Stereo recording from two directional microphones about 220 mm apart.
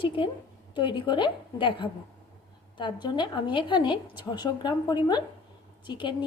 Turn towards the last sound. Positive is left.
turn(degrees=20)  # may be behind; listen again after turning